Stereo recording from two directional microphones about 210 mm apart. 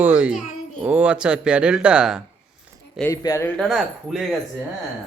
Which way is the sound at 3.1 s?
15° left (ahead or behind).